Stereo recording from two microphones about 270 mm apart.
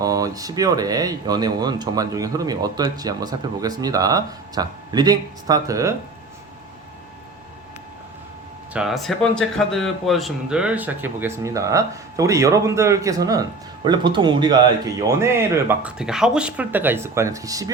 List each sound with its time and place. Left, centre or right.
0.0 s speech: centre
8.7 s speech: centre